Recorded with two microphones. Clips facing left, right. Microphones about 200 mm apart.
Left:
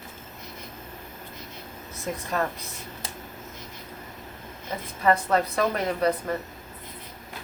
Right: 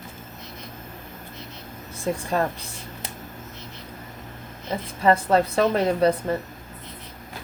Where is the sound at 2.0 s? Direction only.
30° right (ahead or behind).